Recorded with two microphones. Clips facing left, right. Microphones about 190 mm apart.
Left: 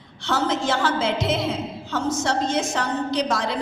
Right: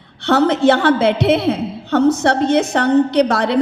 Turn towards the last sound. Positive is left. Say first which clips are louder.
# right 8 dB
turn(degrees=-65)  # may be behind; listen again after turning